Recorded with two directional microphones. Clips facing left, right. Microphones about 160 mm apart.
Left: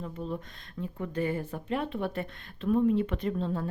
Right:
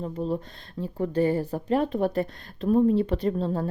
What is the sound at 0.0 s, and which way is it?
Speech, 35° right (ahead or behind).